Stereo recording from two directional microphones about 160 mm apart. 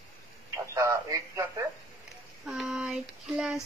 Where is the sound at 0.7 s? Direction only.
20° right (ahead or behind).